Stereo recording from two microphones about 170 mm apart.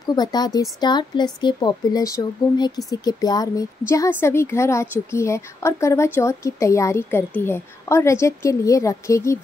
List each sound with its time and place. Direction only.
0.1 s a woman's voice: 25° left (ahead or behind)